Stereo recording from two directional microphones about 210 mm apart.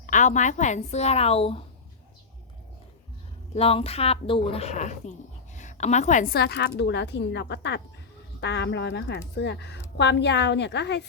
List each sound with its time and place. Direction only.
0.0 s a woman's voice: 35° left (ahead or behind)
3.5 s a woman's voice: 30° left (ahead or behind); by 11.0 s 55° left (ahead or behind)